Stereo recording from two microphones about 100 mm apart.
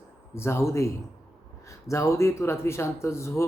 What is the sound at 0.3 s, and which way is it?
Speech, 25° left (ahead or behind).